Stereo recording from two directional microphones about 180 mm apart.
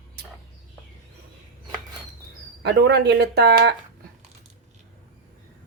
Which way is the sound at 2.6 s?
70° right (ahead or behind).